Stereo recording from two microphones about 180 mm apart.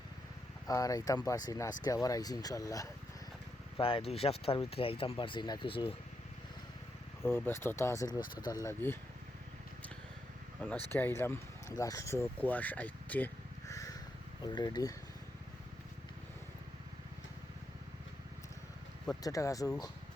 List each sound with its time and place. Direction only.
0.7 s speech: 20° left (ahead or behind)
3.8 s speech: 30° left (ahead or behind)
7.2 s speech: 10° left (ahead or behind)
10.6 s speech: 10° left (ahead or behind)
19.2 s speech: 20° left (ahead or behind)